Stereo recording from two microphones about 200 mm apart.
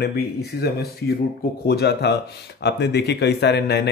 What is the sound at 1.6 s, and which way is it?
Speech, 55° left (ahead or behind).